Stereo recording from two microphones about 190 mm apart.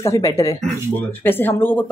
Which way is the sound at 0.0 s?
15° left (ahead or behind).